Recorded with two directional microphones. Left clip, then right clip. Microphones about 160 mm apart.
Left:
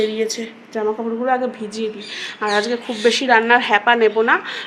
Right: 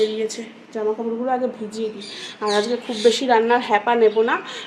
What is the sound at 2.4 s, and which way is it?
A woman's voice, 15° left (ahead or behind).